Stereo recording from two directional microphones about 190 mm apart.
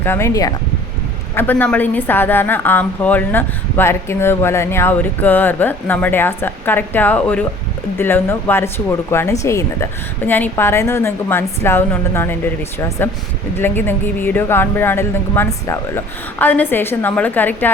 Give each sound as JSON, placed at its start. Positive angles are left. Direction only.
{"t": 0.0, "sound": "a woman's voice", "side_deg": 15}
{"t": 13.6, "sound": "a woman's voice", "side_deg": 10}